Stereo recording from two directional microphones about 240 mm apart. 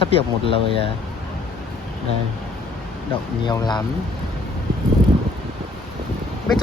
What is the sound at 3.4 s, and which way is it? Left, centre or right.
Speech, centre.